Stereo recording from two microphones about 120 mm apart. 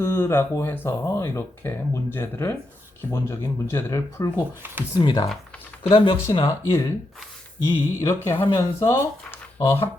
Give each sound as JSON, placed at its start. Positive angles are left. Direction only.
{"t": 0.0, "sound": "speech", "side_deg": 20}
{"t": 4.6, "sound": "speech", "side_deg": -15}
{"t": 4.9, "sound": "speech", "side_deg": 35}
{"t": 5.9, "sound": "speech", "side_deg": 45}
{"t": 7.6, "sound": "speech", "side_deg": 25}